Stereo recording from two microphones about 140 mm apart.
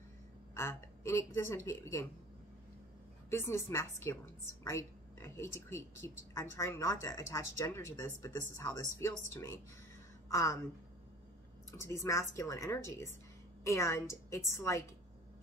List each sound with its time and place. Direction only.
0.6 s a woman's voice: 20° left (ahead or behind)
3.3 s speech: 20° left (ahead or behind)
11.7 s speech: 20° left (ahead or behind)